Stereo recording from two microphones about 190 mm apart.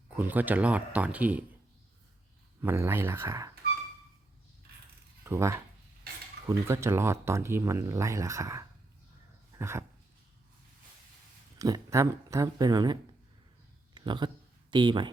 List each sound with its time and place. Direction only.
0.2 s speech: 10° right (ahead or behind)
2.6 s speech: 15° right (ahead or behind)
5.2 s speech: 15° right (ahead or behind)
9.6 s dog: 15° right (ahead or behind)
11.6 s speech: 15° right (ahead or behind)
13.9 s a sound: 25° right (ahead or behind)
14.7 s speech: 25° right (ahead or behind)